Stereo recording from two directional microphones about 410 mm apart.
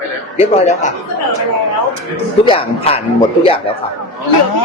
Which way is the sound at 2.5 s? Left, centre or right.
Centre.